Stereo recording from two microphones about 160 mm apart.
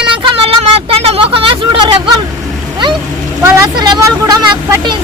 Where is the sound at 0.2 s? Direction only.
35° right (ahead or behind).